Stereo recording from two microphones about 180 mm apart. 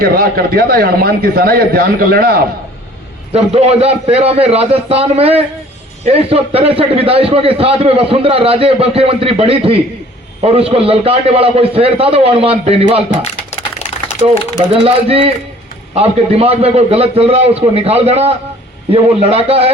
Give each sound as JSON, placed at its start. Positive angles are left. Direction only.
{"t": 0.0, "sound": "speech", "side_deg": -55}
{"t": 3.3, "sound": "a man's voice", "side_deg": -35}
{"t": 14.7, "sound": "a man's voice", "side_deg": -30}